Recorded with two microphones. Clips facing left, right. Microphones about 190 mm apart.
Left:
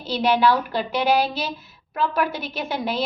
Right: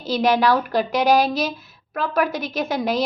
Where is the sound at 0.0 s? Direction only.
45° right (ahead or behind).